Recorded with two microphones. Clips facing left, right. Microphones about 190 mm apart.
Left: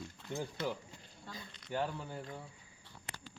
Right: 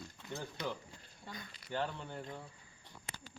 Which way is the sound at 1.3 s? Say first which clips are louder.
Right 1 dB; 15° right (ahead or behind).